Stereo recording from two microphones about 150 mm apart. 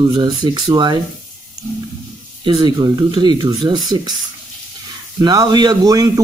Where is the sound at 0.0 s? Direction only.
30° right (ahead or behind).